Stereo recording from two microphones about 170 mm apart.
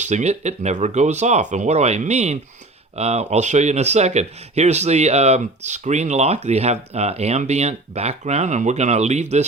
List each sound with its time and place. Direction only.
0.0 s speech: 45° right (ahead or behind)